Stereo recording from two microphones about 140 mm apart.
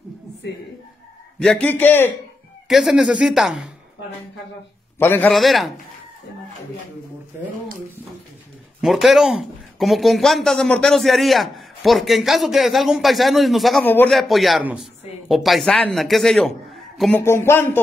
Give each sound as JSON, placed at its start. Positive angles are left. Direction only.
{"t": 1.4, "sound": "a man's voice", "side_deg": 10}
{"t": 2.7, "sound": "a man's voice", "side_deg": 0}
{"t": 4.9, "sound": "a man's voice", "side_deg": 15}
{"t": 5.3, "sound": "a man's voice", "side_deg": 0}
{"t": 8.8, "sound": "a man's voice", "side_deg": 0}
{"t": 13.8, "sound": "a man's voice", "side_deg": 15}
{"t": 14.1, "sound": "a man's voice", "side_deg": 0}
{"t": 17.1, "sound": "a man's voice", "side_deg": 20}